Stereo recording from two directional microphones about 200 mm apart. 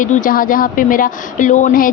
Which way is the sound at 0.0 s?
40° left (ahead or behind).